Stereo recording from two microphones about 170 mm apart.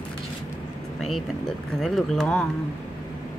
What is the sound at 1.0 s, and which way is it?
Speech, centre (ahead or behind).